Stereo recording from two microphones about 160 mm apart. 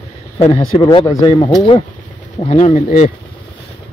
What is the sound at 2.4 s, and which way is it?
Speech, 45° left (ahead or behind).